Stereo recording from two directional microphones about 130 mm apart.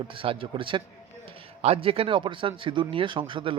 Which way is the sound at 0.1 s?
45° right (ahead or behind).